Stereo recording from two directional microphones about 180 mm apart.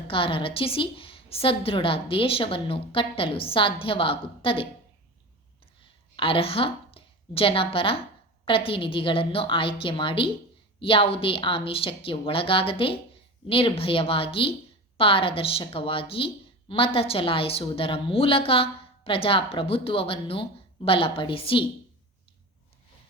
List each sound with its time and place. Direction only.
0.1 s a woman's voice: 30° left (ahead or behind)
6.1 s a woman's voice: 30° left (ahead or behind)